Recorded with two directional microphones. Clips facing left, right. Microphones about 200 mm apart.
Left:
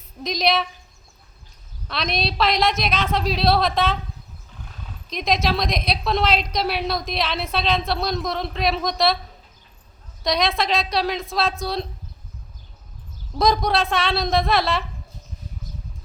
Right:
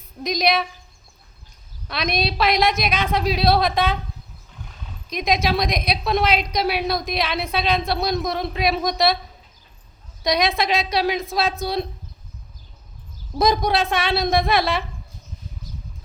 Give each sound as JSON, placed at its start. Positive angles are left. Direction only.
{"t": 0.2, "sound": "a woman's voice", "side_deg": 0}
{"t": 1.9, "sound": "a woman's voice", "side_deg": 0}
{"t": 5.1, "sound": "a woman's voice", "side_deg": 0}
{"t": 10.2, "sound": "a woman's voice", "side_deg": 0}
{"t": 13.9, "sound": "a woman's voice", "side_deg": 0}